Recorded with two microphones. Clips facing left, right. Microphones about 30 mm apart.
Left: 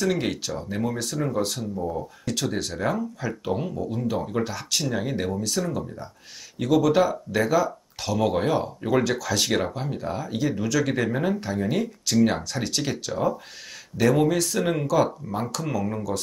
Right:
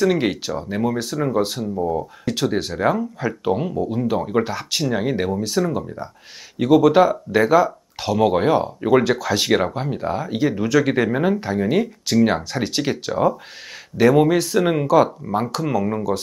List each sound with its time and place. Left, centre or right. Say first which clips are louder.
0.0 s speech: right 6 dB; centre